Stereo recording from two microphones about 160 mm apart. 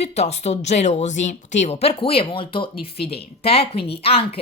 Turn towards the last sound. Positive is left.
turn(degrees=35)  # may be behind; listen again after turning